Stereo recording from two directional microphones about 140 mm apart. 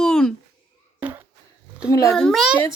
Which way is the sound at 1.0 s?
15° right (ahead or behind).